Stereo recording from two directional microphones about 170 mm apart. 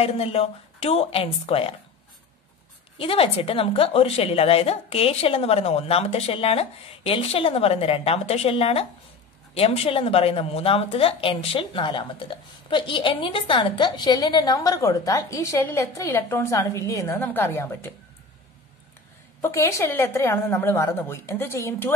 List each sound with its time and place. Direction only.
0.0 s a woman's voice: 35° left (ahead or behind)
3.0 s a woman's voice: 35° left (ahead or behind); by 17.9 s 15° left (ahead or behind)
19.4 s a woman's voice: 15° left (ahead or behind)